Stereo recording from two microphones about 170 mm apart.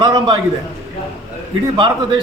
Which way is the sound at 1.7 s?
30° right (ahead or behind).